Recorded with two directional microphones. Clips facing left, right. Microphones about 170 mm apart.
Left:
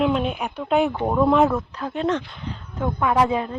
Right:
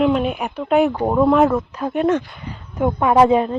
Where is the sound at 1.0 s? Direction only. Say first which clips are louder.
Right 3 dB; 10° right (ahead or behind).